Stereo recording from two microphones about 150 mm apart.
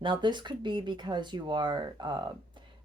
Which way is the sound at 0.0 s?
30° right (ahead or behind).